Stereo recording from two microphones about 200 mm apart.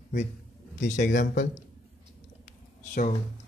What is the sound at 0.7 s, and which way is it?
Speech, 40° left (ahead or behind).